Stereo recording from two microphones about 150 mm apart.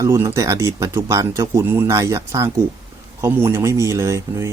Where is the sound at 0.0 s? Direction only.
20° right (ahead or behind).